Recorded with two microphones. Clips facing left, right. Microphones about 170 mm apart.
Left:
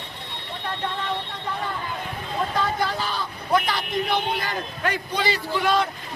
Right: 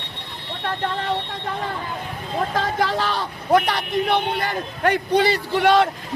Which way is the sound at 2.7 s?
90° right.